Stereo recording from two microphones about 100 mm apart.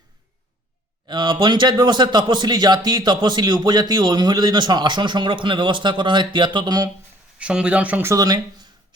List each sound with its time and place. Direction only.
1.0 s a man's voice: 45° right (ahead or behind)
7.3 s speech: 10° right (ahead or behind)
8.0 s speech: 35° right (ahead or behind)